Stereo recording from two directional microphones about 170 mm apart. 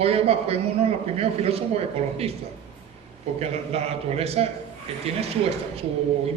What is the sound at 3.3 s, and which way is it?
Speech, 35° right (ahead or behind).